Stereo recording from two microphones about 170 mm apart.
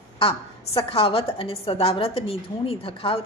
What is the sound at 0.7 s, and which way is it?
A woman's voice, 35° left (ahead or behind).